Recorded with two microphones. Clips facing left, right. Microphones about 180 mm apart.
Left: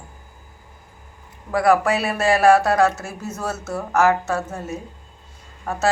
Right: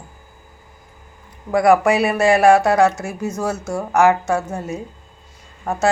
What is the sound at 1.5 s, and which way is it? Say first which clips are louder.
Speech: right 3 dB; 15° right (ahead or behind).